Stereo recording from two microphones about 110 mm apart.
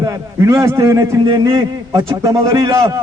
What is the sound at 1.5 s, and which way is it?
A man's voice, 40° right (ahead or behind).